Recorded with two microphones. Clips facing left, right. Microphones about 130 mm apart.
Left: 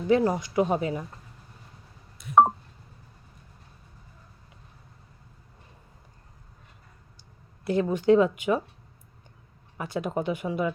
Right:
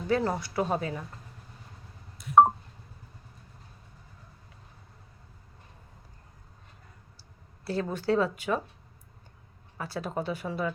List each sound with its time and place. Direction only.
0.1 s speech: 15° left (ahead or behind)
7.6 s speech: 15° left (ahead or behind)
9.7 s speech: 20° left (ahead or behind)